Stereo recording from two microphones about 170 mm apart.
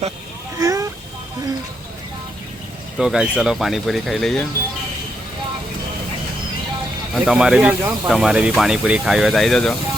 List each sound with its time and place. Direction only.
0.6 s a sound: 20° right (ahead or behind)
3.0 s speech: 5° right (ahead or behind)
7.1 s speech: centre (ahead or behind)